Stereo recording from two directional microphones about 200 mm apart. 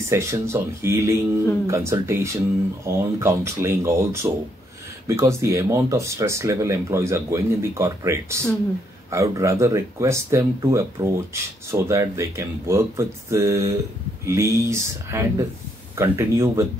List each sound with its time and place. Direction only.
0.0 s speech: 15° right (ahead or behind)